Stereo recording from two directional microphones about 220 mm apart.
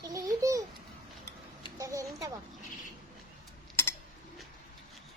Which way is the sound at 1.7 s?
15° right (ahead or behind).